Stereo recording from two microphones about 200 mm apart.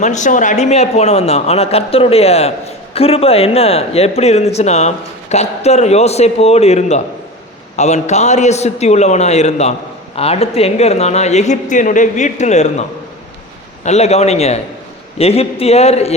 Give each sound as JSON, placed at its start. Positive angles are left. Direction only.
{"t": 0.0, "sound": "a man's voice", "side_deg": 35}
{"t": 13.8, "sound": "a man's voice", "side_deg": 35}